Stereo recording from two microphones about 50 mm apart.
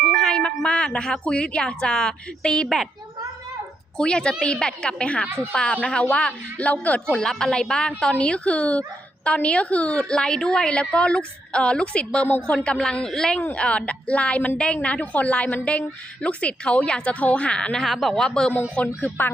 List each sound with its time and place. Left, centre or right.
0.3 s a sound: centre
1.3 s a woman's voice: centre
3.9 s a woman's voice: centre; by 7.0 s left
7.1 s a woman's voice: centre
17.8 s speech: centre
18.2 s a woman's voice: centre
18.8 s a woman's voice: left